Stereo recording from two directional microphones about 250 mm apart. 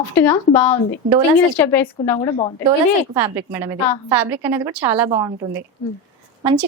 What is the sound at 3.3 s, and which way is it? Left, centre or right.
A woman's voice, centre.